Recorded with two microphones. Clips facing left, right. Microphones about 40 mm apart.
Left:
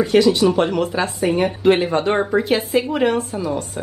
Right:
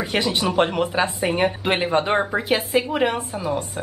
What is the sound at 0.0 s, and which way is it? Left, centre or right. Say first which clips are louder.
Speech: left 8 dB; right.